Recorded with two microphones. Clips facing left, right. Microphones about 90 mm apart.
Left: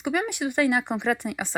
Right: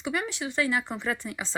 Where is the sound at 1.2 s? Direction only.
25° left (ahead or behind).